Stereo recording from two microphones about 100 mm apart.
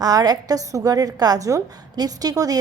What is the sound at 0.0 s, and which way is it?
A woman's voice, 40° right (ahead or behind).